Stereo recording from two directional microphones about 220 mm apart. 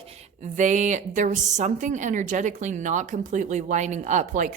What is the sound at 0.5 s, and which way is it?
Speech, 35° right (ahead or behind).